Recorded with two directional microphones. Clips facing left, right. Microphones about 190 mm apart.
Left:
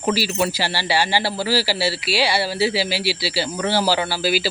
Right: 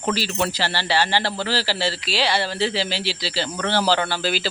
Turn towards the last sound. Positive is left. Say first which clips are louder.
# left 2 dB
turn(degrees=10)  # may be behind; listen again after turning